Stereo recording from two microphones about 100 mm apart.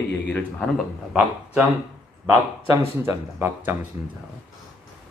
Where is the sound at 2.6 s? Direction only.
30° right (ahead or behind).